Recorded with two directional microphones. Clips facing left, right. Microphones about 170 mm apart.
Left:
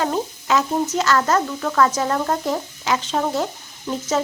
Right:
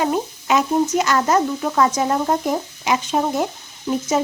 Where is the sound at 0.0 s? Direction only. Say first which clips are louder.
Right 2 dB; 15° right (ahead or behind).